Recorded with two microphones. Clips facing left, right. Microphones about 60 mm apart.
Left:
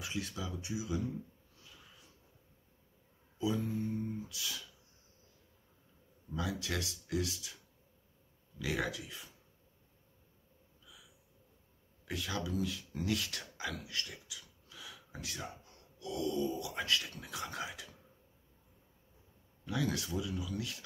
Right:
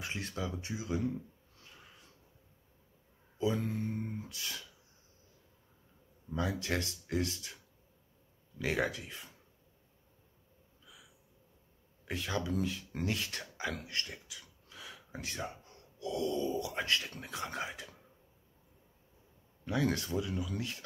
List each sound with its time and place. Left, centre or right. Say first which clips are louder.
0.0 s speech: right 2 dB; right
3.3 s speech: right 2 dB; right
3.8 s beatboxing: left 1 dB; right
6.3 s speech: right 3 dB; right
8.5 s speech: right 3 dB; right
12.1 s speech: right 2 dB; right
19.6 s speech: right 3 dB; right